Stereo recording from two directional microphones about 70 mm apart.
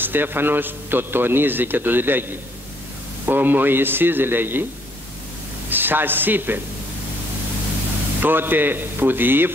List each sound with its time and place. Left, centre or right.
0.0 s a man's voice: right
5.7 s speech: right
8.2 s a man's voice: right